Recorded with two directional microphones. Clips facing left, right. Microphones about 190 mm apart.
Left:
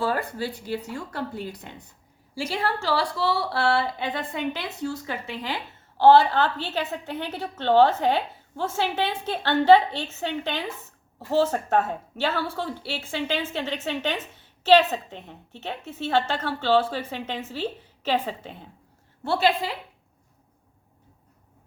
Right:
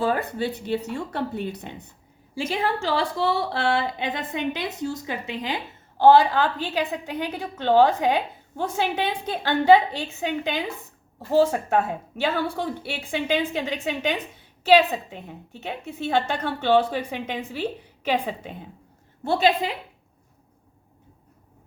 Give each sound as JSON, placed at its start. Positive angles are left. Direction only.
{"t": 0.0, "sound": "a woman's voice", "side_deg": -20}